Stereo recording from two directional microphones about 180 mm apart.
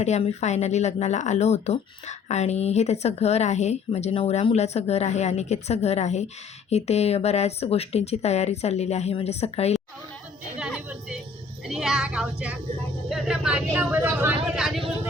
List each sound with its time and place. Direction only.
0.0 s speech: 40° left (ahead or behind)
10.6 s a sound: 5° right (ahead or behind)
11.7 s speech: centre (ahead or behind)